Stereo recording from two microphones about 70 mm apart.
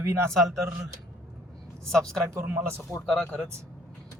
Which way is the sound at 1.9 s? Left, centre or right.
Centre.